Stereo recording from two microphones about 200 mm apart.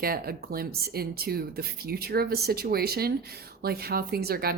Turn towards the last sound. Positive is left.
turn(degrees=-50)  # may be behind; listen again after turning